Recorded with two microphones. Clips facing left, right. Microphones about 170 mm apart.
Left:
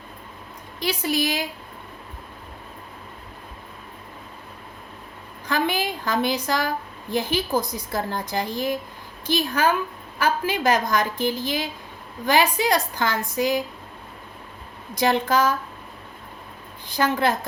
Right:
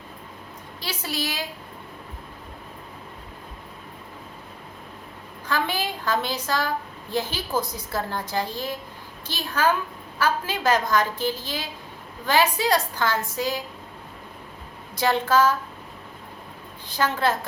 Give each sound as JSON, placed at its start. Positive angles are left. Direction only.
{"t": 0.8, "sound": "a woman's voice", "side_deg": 15}
{"t": 5.5, "sound": "a woman's voice", "side_deg": 15}
{"t": 14.9, "sound": "a woman's voice", "side_deg": 15}
{"t": 17.0, "sound": "a woman's voice", "side_deg": 15}